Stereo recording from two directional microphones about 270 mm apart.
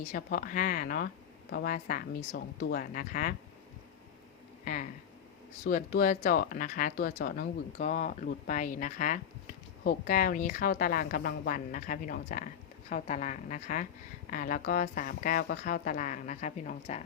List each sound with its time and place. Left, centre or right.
0.1 s a woman's voice: left
4.6 s a woman's voice: left